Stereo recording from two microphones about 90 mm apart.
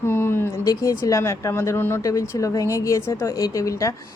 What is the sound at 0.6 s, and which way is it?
Speech, 40° left (ahead or behind).